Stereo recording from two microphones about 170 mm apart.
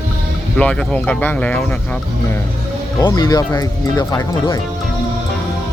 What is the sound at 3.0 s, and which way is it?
Speech, 20° left (ahead or behind).